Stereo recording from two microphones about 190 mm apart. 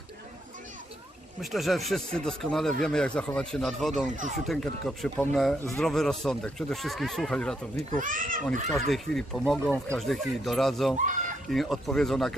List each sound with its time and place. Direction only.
1.4 s speech: centre (ahead or behind)
7.8 s speech: 45° right (ahead or behind)
8.9 s speech: centre (ahead or behind)
11.0 s speech: 40° right (ahead or behind)
11.4 s speech: centre (ahead or behind)